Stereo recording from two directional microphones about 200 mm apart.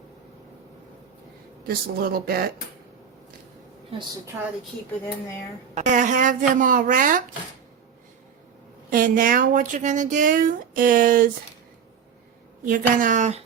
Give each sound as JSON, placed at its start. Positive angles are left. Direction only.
{"t": 1.6, "sound": "speech", "side_deg": -50}
{"t": 4.3, "sound": "a woman's voice", "side_deg": -15}
{"t": 5.7, "sound": "speech", "side_deg": -40}
{"t": 8.9, "sound": "speech", "side_deg": -45}
{"t": 12.6, "sound": "speech", "side_deg": -45}